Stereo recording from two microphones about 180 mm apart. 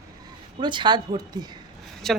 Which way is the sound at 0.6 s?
25° right (ahead or behind).